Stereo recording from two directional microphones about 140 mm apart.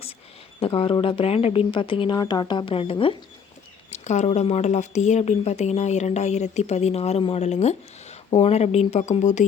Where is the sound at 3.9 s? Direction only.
55° left (ahead or behind).